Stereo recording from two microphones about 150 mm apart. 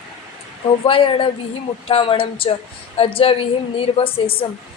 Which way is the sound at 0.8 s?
35° left (ahead or behind).